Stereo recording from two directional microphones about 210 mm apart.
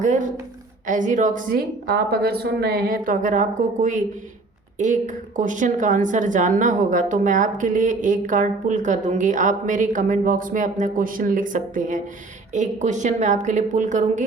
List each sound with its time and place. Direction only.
0.0 s a woman's voice: 35° right (ahead or behind)